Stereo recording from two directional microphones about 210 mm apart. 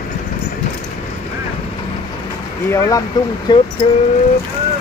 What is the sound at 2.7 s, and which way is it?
Speech, 15° left (ahead or behind).